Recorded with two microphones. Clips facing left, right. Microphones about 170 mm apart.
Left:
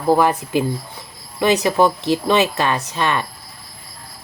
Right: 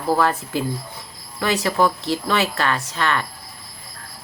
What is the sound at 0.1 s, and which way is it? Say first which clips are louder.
Speech: left 4 dB; 15° left (ahead or behind).